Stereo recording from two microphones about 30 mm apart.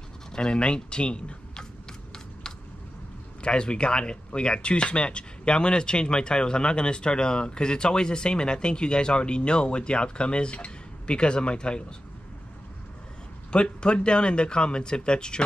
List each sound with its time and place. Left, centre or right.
0.3 s speech: left
3.4 s speech: left
13.5 s speech: left